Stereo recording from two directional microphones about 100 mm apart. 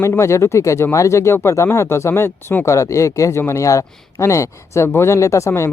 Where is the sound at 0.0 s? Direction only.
30° left (ahead or behind).